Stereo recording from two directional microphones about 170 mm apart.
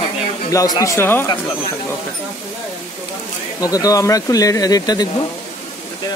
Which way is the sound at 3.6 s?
20° left (ahead or behind).